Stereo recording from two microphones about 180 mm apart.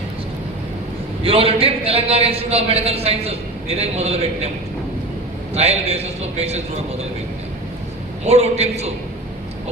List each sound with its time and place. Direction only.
1.2 s a man's voice: 30° right (ahead or behind)
5.5 s a man's voice: 35° right (ahead or behind)
8.3 s a man's voice: 35° right (ahead or behind)